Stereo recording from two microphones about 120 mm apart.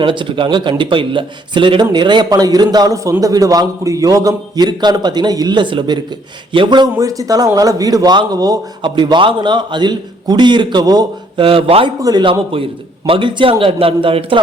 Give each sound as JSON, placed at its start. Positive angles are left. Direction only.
{"t": 0.0, "sound": "a man's voice", "side_deg": -45}
{"t": 11.3, "sound": "a man's voice", "side_deg": -50}
{"t": 12.0, "sound": "a man's voice", "side_deg": -40}